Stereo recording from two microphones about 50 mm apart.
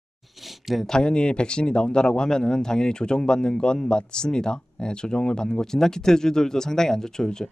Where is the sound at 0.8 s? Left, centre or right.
Centre.